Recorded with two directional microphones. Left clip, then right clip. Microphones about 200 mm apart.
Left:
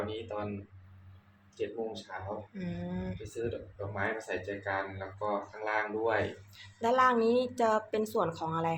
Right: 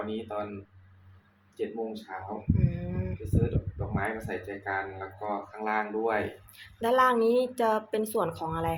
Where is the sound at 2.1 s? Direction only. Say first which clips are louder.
Right 3 dB; 25° right (ahead or behind).